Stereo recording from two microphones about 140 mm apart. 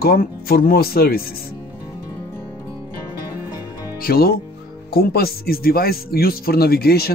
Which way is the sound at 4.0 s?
90° left.